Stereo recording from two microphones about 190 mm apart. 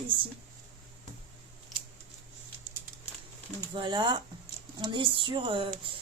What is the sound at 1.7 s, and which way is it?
Scissors, centre (ahead or behind).